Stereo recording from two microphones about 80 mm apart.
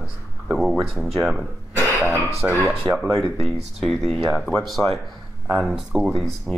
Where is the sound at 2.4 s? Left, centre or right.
Right.